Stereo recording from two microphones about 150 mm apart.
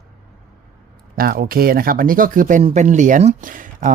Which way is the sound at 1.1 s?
75° right (ahead or behind).